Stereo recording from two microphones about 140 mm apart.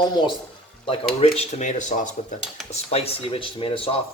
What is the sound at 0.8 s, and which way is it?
Speech, 45° left (ahead or behind).